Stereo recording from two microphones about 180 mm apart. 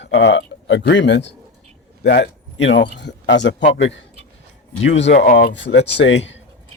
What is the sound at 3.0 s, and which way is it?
Speech, 80° left.